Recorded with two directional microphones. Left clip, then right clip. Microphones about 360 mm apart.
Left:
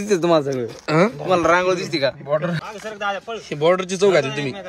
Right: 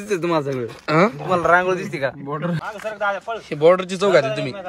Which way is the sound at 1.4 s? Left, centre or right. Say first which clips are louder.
Right 2 dB; left.